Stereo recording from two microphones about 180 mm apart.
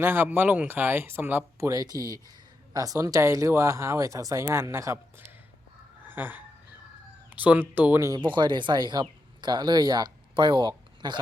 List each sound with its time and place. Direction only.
0.0 s speech: 10° right (ahead or behind)
6.1 s a sound: 10° right (ahead or behind)
7.3 s speech: 10° right (ahead or behind); by 11.2 s 25° right (ahead or behind)